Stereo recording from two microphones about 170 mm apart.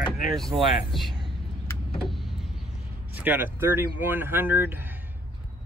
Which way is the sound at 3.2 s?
10° right (ahead or behind).